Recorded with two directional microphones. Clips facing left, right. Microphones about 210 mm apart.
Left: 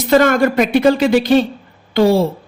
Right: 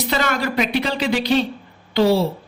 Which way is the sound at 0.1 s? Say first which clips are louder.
Left 12 dB; 50° left (ahead or behind).